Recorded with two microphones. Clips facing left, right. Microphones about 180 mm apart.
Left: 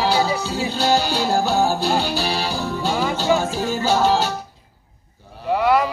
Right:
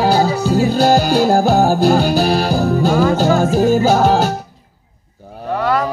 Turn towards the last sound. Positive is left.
turn(degrees=10)  # may be behind; listen again after turning